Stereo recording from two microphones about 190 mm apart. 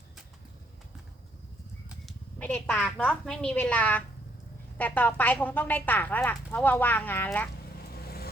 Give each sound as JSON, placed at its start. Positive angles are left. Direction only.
{"t": 2.0, "sound": "a woman's voice", "side_deg": 5}
{"t": 8.0, "sound": "vehicle", "side_deg": 55}